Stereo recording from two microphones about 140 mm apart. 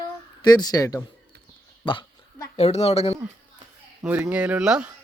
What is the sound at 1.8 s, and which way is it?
Speech, 35° left (ahead or behind).